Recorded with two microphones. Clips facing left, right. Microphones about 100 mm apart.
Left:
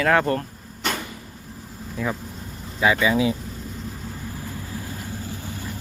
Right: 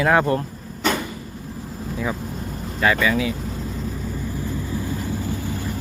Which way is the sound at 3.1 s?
25° left (ahead or behind).